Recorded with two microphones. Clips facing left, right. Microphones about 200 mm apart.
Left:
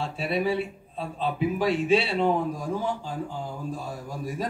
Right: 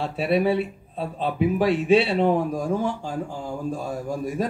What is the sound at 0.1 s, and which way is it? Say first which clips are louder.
Speech: right 7 dB; 60° right (ahead or behind).